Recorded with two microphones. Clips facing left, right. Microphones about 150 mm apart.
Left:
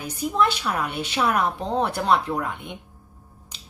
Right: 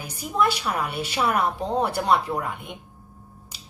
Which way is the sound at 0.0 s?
10° right (ahead or behind).